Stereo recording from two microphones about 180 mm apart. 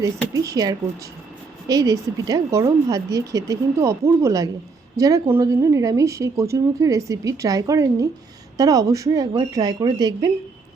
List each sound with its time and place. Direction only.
0.0 s a woman's voice: 20° right (ahead or behind)